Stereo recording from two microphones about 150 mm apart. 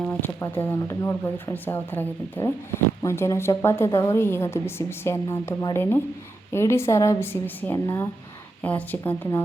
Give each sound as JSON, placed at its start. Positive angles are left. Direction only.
{"t": 0.0, "sound": "a woman's voice", "side_deg": 10}